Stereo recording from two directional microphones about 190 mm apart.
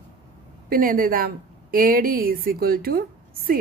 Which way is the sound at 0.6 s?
50° right (ahead or behind).